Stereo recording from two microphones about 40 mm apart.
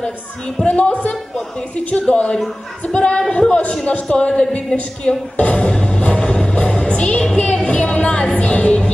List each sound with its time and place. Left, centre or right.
0.7 s a woman's voice: left
4.7 s music: left